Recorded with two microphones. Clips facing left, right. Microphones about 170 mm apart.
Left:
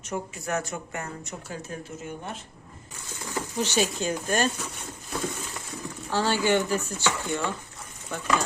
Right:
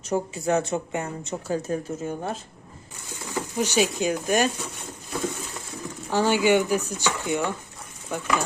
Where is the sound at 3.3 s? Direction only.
15° right (ahead or behind).